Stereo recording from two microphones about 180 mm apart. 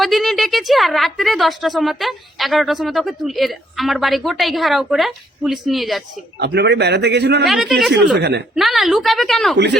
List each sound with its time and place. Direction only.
0.0 s a woman's voice: centre (ahead or behind)
6.4 s a man's voice: 70° right (ahead or behind)
7.4 s a woman's voice: centre (ahead or behind)
7.9 s a man's voice: 70° right (ahead or behind)
8.5 s a woman's voice: centre (ahead or behind)